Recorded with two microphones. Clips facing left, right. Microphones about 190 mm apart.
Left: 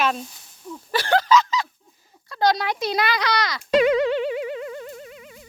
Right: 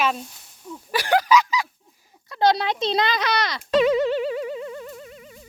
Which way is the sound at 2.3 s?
25° right (ahead or behind).